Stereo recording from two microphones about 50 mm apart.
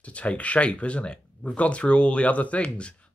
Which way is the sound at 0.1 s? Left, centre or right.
Left.